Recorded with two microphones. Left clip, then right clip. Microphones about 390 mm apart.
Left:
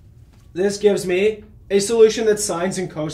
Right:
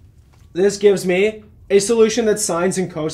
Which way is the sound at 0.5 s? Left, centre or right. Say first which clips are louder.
Right 3 dB; right.